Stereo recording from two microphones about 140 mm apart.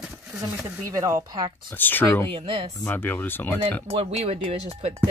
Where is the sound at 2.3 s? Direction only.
40° right (ahead or behind).